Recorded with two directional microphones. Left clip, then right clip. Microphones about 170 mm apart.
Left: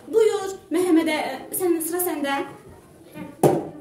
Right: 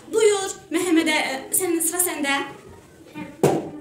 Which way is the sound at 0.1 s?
35° left (ahead or behind).